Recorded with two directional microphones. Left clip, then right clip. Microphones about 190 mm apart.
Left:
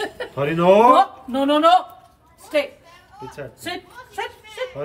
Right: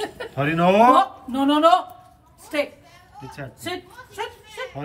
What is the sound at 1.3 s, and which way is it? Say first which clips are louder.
Speech: even; 30° right (ahead or behind).